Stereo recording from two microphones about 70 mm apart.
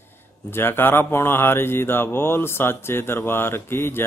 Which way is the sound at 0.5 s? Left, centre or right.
Left.